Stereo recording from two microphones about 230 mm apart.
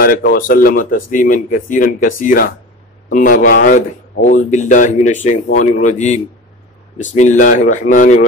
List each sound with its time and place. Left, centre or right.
0.3 s speech: left